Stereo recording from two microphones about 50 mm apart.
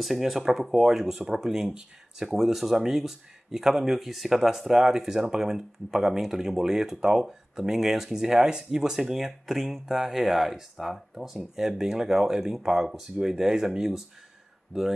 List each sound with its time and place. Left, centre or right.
0.0 s speech: centre